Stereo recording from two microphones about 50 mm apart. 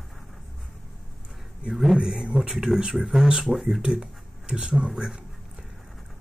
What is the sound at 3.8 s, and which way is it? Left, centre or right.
Speech, centre.